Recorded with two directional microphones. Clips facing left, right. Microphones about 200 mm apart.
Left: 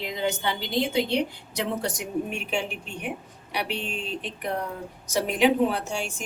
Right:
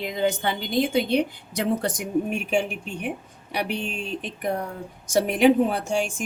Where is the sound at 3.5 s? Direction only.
50° right (ahead or behind).